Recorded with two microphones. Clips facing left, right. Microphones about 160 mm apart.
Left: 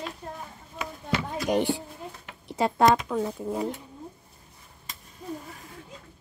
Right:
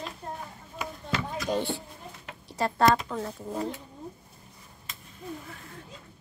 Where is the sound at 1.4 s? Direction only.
15° left (ahead or behind).